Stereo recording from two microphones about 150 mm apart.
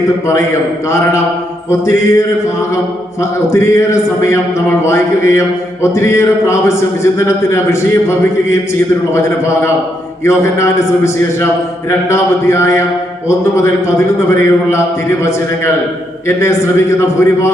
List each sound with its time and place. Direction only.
0.9 s speech: 20° left (ahead or behind)
3.4 s speech: 20° left (ahead or behind)
17.0 s a man's voice: 20° left (ahead or behind)